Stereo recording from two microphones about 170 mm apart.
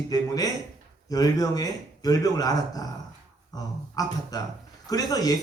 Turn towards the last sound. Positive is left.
turn(degrees=20)  # may be behind; listen again after turning